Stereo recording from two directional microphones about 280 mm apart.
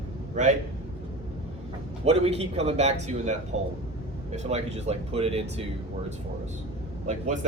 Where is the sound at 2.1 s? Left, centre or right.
Right.